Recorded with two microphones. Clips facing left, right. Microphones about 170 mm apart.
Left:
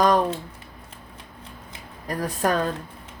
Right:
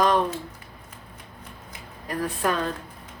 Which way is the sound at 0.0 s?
40° left (ahead or behind).